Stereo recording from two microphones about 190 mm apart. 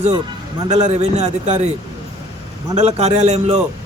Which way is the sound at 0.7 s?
35° right (ahead or behind).